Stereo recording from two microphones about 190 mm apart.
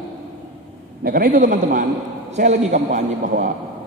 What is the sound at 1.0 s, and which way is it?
A man's voice, 50° right (ahead or behind).